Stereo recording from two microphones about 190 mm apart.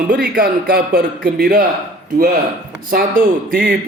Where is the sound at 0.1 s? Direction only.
50° right (ahead or behind).